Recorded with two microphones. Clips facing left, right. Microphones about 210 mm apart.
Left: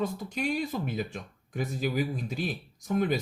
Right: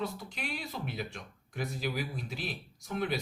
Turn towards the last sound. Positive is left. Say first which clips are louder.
# left 6 dB
turn(degrees=50)  # may be behind; listen again after turning